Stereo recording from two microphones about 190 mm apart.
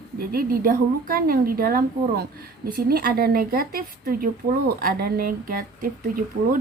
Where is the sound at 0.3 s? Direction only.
50° right (ahead or behind).